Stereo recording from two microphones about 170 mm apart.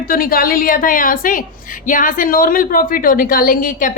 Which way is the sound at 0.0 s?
60° left (ahead or behind).